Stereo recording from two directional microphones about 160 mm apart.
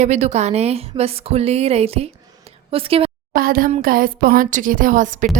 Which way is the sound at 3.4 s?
65° right (ahead or behind).